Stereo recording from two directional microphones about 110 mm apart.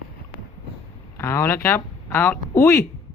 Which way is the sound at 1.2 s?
25° left (ahead or behind).